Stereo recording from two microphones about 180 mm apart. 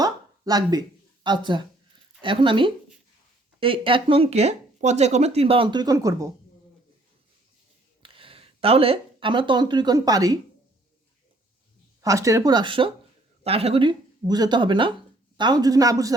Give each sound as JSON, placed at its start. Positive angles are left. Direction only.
{"t": 0.0, "sound": "a sound", "side_deg": -20}
{"t": 2.2, "sound": "speech", "side_deg": -25}
{"t": 8.0, "sound": "speech", "side_deg": -30}
{"t": 12.0, "sound": "speech", "side_deg": -15}